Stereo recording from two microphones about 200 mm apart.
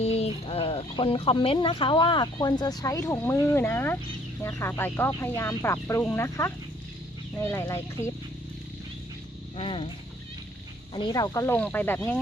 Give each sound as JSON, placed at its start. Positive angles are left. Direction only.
{"t": 0.0, "sound": "speech", "side_deg": 30}
{"t": 9.6, "sound": "speech", "side_deg": 25}
{"t": 10.9, "sound": "speech", "side_deg": 20}